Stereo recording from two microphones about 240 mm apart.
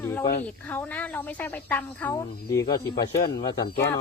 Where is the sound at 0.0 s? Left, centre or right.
Centre.